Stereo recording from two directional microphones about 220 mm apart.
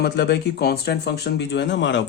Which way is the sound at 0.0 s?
50° left (ahead or behind).